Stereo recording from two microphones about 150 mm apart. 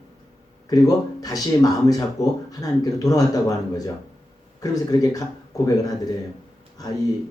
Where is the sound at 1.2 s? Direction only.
25° left (ahead or behind).